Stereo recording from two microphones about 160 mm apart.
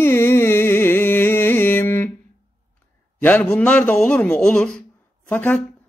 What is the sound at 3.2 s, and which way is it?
A man's voice, 10° left (ahead or behind).